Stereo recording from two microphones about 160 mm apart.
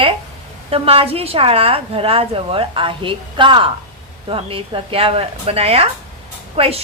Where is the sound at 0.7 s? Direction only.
35° right (ahead or behind).